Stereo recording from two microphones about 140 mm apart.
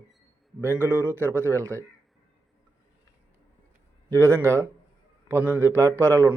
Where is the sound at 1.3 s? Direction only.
20° right (ahead or behind).